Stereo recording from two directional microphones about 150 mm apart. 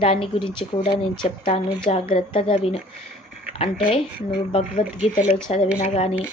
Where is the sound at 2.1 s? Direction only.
40° left (ahead or behind).